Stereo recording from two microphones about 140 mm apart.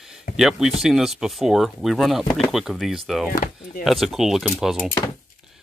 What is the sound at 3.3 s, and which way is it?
Speech, 90° left.